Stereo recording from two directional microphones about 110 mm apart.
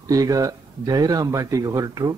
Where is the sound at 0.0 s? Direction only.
30° right (ahead or behind).